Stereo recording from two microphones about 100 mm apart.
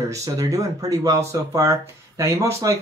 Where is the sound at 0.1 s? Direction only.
30° right (ahead or behind).